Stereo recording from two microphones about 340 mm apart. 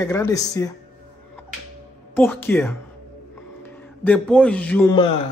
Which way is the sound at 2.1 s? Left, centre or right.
Centre.